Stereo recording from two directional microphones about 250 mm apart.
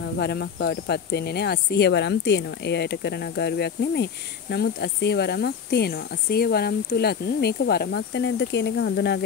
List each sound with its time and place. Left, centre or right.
0.2 s speech: left